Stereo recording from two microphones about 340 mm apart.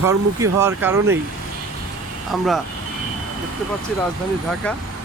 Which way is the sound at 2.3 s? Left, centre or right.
Centre.